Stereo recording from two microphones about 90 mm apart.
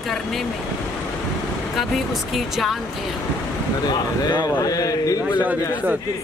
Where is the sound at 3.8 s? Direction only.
50° left (ahead or behind).